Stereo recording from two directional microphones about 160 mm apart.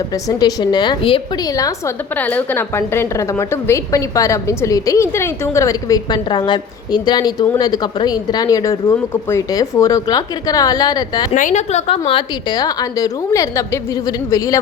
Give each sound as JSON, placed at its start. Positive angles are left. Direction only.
{"t": 0.1, "sound": "a woman's voice", "side_deg": 25}
{"t": 2.1, "sound": "a woman's voice", "side_deg": 10}
{"t": 11.3, "sound": "a woman's voice", "side_deg": 50}